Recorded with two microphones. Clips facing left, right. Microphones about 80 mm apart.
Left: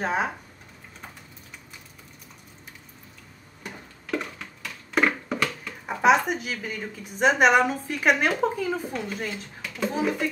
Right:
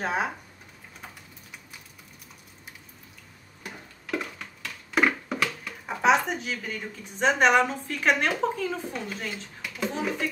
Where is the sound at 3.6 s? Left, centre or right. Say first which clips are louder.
Left 1 dB; centre.